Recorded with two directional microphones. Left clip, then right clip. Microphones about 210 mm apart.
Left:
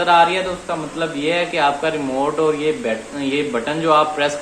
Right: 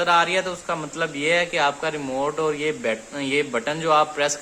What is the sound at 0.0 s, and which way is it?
A man's voice, 20° right (ahead or behind).